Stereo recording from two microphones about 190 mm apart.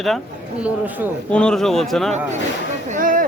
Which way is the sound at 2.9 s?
45° right (ahead or behind).